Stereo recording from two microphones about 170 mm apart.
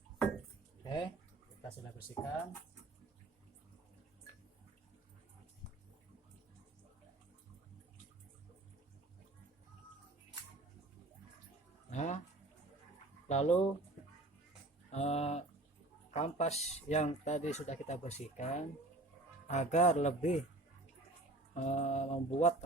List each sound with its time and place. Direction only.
0.9 s a sound: 25° left (ahead or behind)
2.2 s speech: 5° left (ahead or behind)
11.9 s speech: 45° left (ahead or behind)
13.2 s speech: 40° left (ahead or behind)
14.8 s speech: 40° left (ahead or behind)
21.5 s speech: 40° left (ahead or behind)